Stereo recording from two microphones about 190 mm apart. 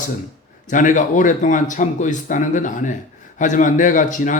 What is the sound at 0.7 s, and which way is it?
A man's voice, 45° left (ahead or behind).